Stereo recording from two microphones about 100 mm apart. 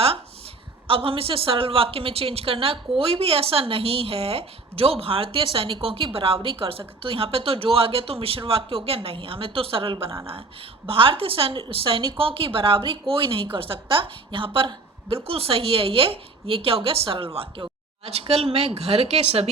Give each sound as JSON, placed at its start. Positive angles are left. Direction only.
{"t": 0.9, "sound": "a woman's voice", "side_deg": -65}